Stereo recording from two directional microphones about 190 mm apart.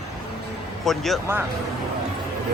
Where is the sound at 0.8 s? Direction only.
Centre (ahead or behind).